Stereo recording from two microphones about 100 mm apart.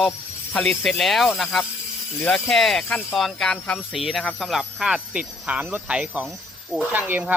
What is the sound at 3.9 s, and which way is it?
Speech, centre (ahead or behind).